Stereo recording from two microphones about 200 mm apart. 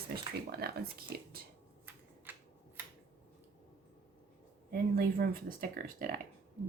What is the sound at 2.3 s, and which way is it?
Scissors, 10° right (ahead or behind).